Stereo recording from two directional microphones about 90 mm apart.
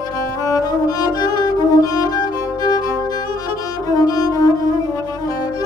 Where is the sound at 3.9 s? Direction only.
45° left (ahead or behind).